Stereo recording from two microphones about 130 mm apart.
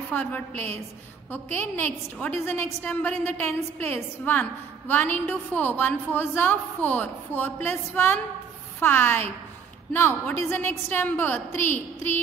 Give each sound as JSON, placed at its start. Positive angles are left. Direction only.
{"t": 0.1, "sound": "a woman's voice", "side_deg": 15}